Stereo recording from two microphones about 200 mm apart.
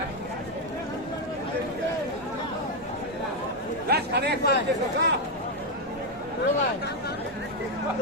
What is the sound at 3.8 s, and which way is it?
Speech, 55° right (ahead or behind).